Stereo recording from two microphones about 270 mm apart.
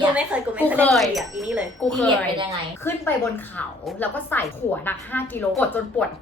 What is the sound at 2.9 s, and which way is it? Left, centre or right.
A woman's voice, centre.